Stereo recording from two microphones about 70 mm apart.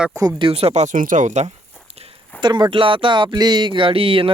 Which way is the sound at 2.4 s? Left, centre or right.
Right.